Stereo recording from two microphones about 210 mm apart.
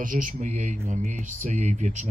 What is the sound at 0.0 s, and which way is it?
Speech, 40° right (ahead or behind).